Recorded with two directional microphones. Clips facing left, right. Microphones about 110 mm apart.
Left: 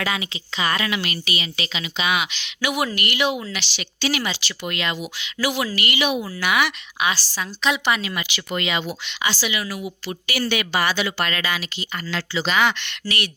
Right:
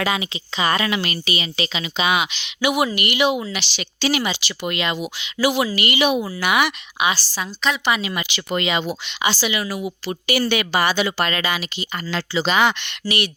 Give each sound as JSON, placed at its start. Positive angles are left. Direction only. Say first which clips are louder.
{"t": 0.0, "sound": "a woman's voice", "louder": "right 3 dB", "side_deg": -25}
{"t": 8.0, "sound": "a woman's voice", "louder": "right 2 dB", "side_deg": -25}